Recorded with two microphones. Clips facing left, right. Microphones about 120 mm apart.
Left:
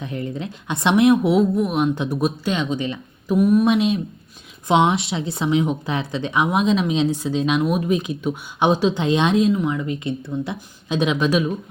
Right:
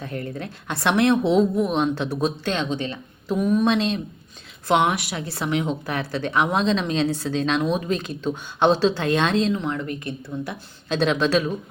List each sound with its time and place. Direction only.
0.0 s a woman's voice: 20° left (ahead or behind)
4.7 s a woman's voice: 20° left (ahead or behind)